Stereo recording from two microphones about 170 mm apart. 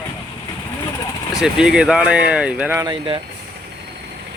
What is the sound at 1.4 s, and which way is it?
Speech, 5° right (ahead or behind).